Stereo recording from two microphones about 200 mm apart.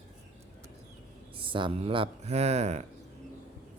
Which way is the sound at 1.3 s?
25° right (ahead or behind).